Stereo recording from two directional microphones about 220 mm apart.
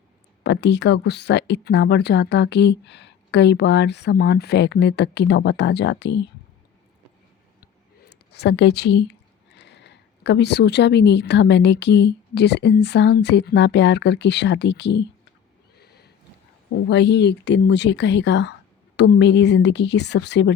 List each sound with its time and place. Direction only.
0.4 s speech: 50° left (ahead or behind)
7.6 s a sound: 50° left (ahead or behind)
9.6 s speech: 50° left (ahead or behind)
15.8 s horse: 45° left (ahead or behind)
16.9 s speech: 50° left (ahead or behind)